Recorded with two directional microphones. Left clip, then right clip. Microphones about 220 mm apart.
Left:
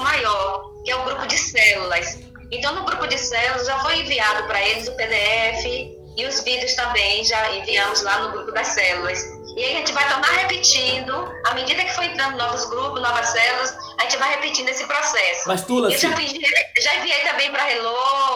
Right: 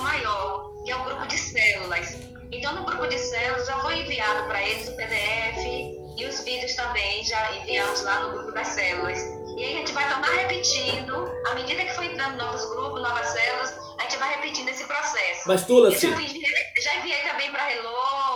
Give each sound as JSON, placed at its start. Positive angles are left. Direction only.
{"t": 0.0, "sound": "a sound", "side_deg": 50}
{"t": 2.6, "sound": "a woman's voice", "side_deg": 50}
{"t": 15.7, "sound": "speech", "side_deg": 5}
{"t": 16.0, "sound": "a woman's voice", "side_deg": 50}